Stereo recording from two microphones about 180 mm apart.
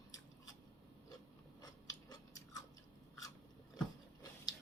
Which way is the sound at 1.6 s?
20° left (ahead or behind).